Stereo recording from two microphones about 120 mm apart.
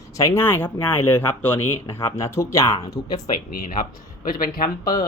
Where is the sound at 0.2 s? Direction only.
25° left (ahead or behind).